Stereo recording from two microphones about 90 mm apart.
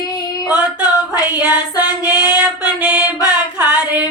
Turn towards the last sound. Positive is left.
turn(degrees=-20)  # may be behind; listen again after turning